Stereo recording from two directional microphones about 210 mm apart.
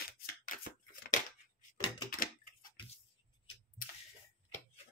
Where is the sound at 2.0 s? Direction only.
40° left (ahead or behind).